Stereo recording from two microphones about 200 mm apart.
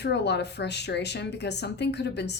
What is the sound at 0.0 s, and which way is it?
Speech, 55° left (ahead or behind).